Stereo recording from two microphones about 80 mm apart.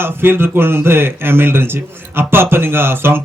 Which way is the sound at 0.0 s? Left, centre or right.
Right.